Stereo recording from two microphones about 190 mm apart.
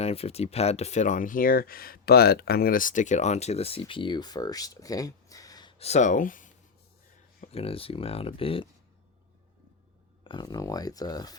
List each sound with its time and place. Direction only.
0.0 s speech: 30° left (ahead or behind)
5.8 s speech: 35° left (ahead or behind)
7.4 s speech: 30° left (ahead or behind)
10.2 s speech: 20° left (ahead or behind)